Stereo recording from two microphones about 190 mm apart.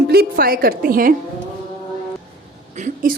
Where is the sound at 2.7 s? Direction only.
45° right (ahead or behind).